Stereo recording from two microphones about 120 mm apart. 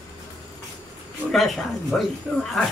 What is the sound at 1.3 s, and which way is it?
Speech, centre (ahead or behind).